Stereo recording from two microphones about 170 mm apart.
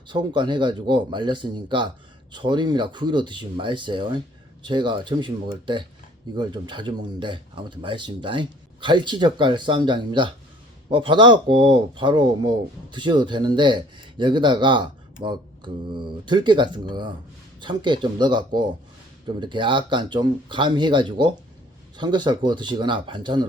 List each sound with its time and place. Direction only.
0.1 s speech: 25° right (ahead or behind)